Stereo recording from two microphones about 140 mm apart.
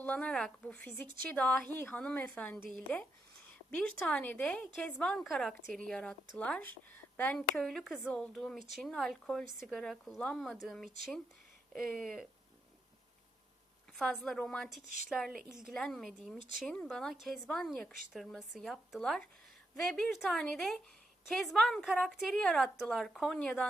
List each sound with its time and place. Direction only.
0.0 s speech: 10° left (ahead or behind)
3.8 s a woman's voice: 10° left (ahead or behind)
13.9 s a woman's voice: 5° left (ahead or behind)